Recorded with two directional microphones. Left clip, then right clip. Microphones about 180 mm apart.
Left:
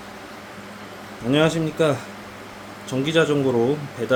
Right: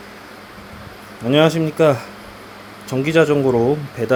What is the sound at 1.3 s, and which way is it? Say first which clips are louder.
Speech: right 5 dB; 30° right (ahead or behind).